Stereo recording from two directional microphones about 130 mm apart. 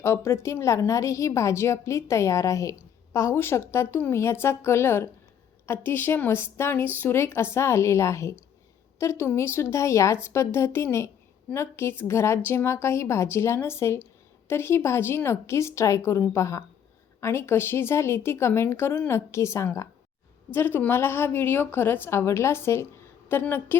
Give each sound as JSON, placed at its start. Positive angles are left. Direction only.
{"t": 0.0, "sound": "a woman's voice", "side_deg": 20}